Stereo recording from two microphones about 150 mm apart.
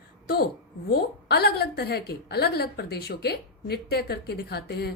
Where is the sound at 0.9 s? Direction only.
90° left.